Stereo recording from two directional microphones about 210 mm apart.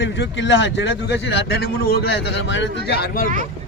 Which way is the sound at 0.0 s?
60° left (ahead or behind).